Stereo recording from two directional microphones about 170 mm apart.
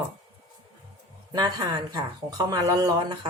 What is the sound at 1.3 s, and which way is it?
Speech, 20° right (ahead or behind).